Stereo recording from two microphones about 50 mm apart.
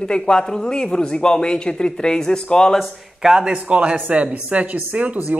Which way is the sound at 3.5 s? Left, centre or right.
Right.